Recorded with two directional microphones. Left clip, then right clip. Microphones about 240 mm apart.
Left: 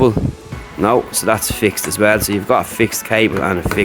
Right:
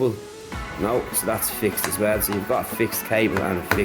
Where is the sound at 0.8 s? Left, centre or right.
Left.